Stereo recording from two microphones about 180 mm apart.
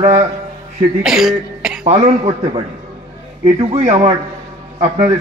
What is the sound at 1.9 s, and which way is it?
A man's voice, 35° right (ahead or behind).